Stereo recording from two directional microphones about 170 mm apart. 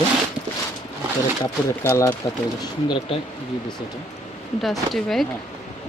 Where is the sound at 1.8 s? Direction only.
10° left (ahead or behind).